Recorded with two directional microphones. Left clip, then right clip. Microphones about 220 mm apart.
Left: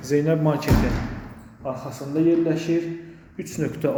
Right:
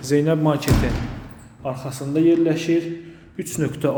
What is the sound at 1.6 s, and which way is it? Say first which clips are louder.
A man's voice: right 2 dB; 25° right (ahead or behind).